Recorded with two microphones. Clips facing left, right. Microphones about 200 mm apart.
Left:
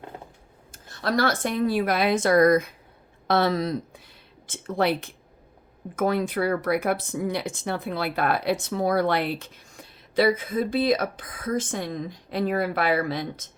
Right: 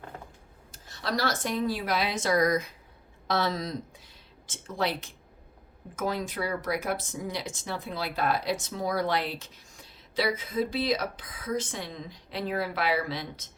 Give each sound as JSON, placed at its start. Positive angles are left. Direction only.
{"t": 0.7, "sound": "speech", "side_deg": 55}